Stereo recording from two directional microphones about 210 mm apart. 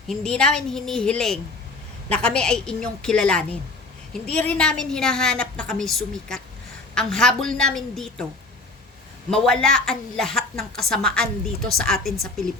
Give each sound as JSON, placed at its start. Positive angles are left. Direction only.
{"t": 0.1, "sound": "a woman's voice", "side_deg": 5}
{"t": 9.3, "sound": "a woman's voice", "side_deg": 5}